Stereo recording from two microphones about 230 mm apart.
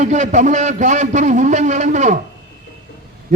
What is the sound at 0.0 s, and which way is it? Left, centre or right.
A man's voice, right.